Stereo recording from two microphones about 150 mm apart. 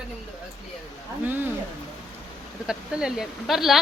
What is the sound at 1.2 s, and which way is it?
Speech, 15° right (ahead or behind).